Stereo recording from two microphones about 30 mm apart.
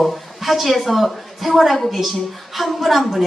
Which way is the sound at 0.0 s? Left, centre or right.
Centre.